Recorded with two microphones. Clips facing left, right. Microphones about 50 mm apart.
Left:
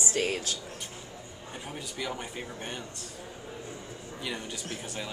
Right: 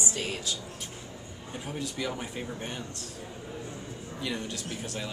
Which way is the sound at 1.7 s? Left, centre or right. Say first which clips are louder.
Right 3 dB; centre.